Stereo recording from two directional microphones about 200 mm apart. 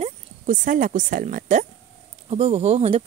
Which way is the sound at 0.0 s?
40° right (ahead or behind).